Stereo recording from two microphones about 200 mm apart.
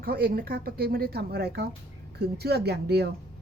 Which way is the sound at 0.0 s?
50° right (ahead or behind).